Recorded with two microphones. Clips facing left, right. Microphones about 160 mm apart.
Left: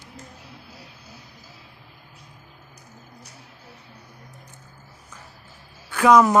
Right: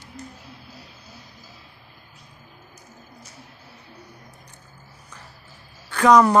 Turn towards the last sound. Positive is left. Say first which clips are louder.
# even
turn(degrees=5)  # may be behind; listen again after turning